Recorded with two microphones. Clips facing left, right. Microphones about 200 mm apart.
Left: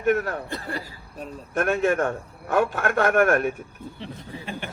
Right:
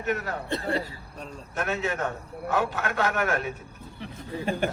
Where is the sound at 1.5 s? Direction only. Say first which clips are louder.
Left 7 dB; 55° left (ahead or behind).